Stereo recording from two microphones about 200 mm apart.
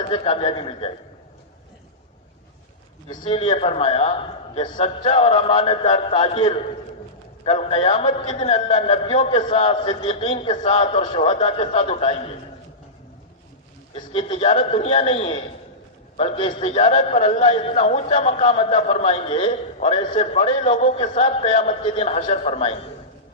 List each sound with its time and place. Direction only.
0.1 s a man's voice: 30° left (ahead or behind)
3.1 s a man's voice: 30° left (ahead or behind)
13.9 s a man's voice: 25° left (ahead or behind)